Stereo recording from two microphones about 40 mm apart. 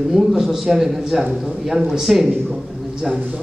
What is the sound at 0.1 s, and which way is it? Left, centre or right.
A man's voice, centre.